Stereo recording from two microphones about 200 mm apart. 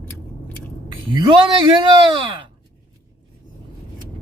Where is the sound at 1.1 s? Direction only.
25° right (ahead or behind).